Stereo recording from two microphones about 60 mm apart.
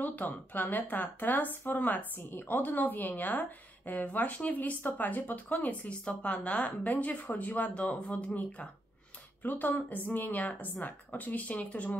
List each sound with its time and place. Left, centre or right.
0.0 s speech: left